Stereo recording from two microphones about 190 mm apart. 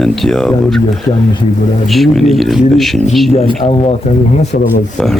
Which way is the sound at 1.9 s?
Centre (ahead or behind).